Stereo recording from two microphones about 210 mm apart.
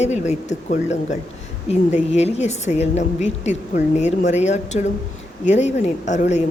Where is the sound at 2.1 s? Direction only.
30° left (ahead or behind).